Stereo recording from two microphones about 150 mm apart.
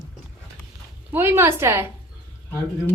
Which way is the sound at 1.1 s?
15° right (ahead or behind).